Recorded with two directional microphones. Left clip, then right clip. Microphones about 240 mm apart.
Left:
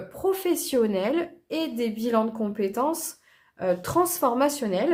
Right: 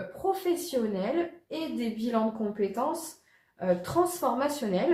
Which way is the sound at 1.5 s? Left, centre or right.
Left.